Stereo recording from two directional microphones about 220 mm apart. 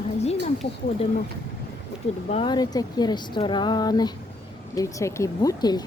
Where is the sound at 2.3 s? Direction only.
20° left (ahead or behind).